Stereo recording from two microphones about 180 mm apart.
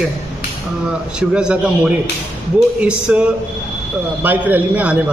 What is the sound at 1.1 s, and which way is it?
A man's voice, 5° right (ahead or behind).